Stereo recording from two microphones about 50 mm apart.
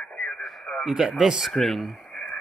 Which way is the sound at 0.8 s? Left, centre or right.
Centre.